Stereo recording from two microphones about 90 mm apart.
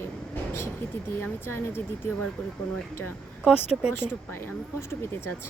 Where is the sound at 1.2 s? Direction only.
25° left (ahead or behind).